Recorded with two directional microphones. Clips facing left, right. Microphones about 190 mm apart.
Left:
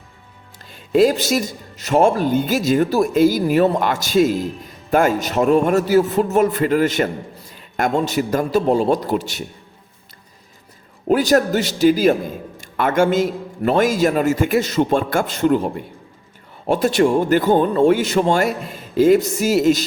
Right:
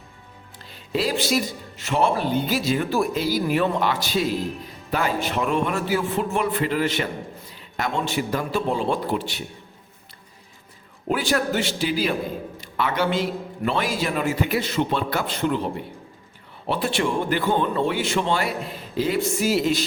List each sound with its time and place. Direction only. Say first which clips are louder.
0.6 s speech: left 11 dB; 45° left (ahead or behind)
11.1 s speech: left 7 dB; 40° left (ahead or behind)